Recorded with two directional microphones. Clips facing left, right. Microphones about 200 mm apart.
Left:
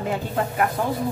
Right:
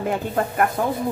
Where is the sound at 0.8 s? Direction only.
50° right (ahead or behind).